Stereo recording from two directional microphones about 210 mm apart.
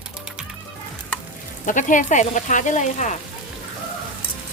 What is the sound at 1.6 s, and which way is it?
Speech, 40° left (ahead or behind).